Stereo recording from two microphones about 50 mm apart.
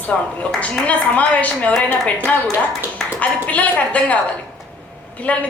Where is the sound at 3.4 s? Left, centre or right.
Left.